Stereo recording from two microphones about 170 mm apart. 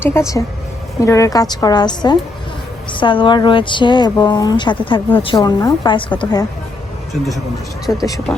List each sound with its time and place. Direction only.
0.0 s speech: 15° left (ahead or behind)
7.9 s speech: 15° left (ahead or behind)